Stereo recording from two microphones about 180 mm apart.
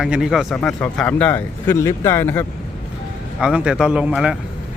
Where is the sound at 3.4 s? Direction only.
5° right (ahead or behind).